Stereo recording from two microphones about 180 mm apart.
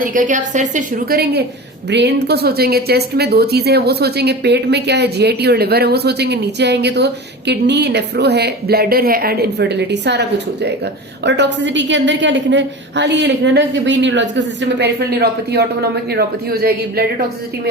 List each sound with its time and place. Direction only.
0.0 s a woman's voice: 50° right (ahead or behind)